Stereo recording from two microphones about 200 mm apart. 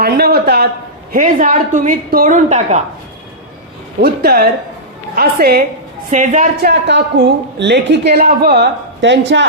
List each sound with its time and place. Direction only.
0.0 s a sound: 50° right (ahead or behind)
1.1 s a woman's voice: 45° right (ahead or behind)
4.0 s a woman's voice: 50° right (ahead or behind)
6.1 s a woman's voice: 35° right (ahead or behind)
6.7 s a woman's voice: 60° right (ahead or behind)